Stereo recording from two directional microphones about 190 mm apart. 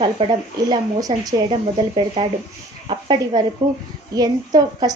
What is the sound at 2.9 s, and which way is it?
A woman's voice, 20° right (ahead or behind).